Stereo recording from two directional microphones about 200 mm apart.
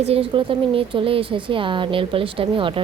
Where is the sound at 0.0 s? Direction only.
30° right (ahead or behind).